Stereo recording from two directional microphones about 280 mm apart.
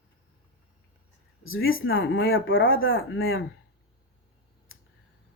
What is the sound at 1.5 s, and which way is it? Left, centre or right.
Speech, left.